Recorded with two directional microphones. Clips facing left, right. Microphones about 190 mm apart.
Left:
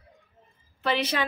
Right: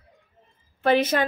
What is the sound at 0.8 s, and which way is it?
Speech, 50° right (ahead or behind).